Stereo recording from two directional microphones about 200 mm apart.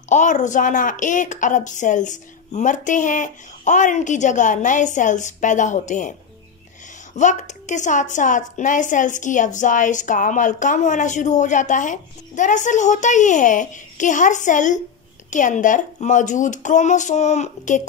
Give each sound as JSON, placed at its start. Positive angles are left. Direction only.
{"t": 0.1, "sound": "a woman's voice", "side_deg": 40}
{"t": 7.2, "sound": "a woman's voice", "side_deg": 35}